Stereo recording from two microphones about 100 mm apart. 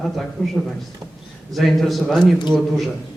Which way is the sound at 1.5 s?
Centre (ahead or behind).